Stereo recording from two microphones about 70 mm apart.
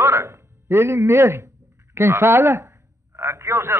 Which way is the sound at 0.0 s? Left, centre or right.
Right.